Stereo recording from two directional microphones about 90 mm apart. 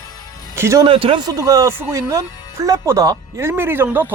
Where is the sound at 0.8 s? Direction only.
90° right.